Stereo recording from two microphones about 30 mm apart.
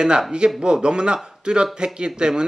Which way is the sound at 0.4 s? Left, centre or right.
Right.